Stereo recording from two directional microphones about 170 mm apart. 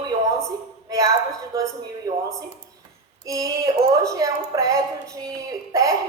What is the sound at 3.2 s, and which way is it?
Speech, 20° right (ahead or behind).